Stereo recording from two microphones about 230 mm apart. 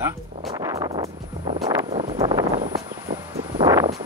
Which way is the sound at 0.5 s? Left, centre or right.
Centre.